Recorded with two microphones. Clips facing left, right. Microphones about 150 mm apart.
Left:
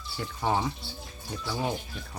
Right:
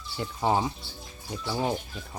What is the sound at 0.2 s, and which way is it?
Speech, 20° right (ahead or behind).